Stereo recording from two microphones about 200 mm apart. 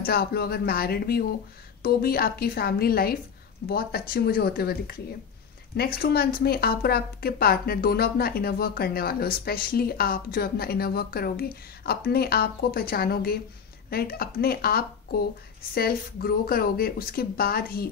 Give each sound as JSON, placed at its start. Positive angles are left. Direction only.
{"t": 0.0, "sound": "a woman's voice", "side_deg": 50}